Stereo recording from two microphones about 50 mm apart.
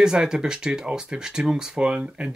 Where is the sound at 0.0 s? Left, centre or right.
Centre.